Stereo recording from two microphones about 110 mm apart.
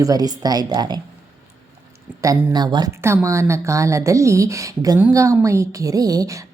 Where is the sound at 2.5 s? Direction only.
40° right (ahead or behind).